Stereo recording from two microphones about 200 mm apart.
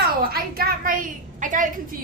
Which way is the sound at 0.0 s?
50° right (ahead or behind).